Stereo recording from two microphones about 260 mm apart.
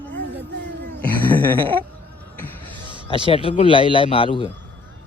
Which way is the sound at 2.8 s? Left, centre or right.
Centre.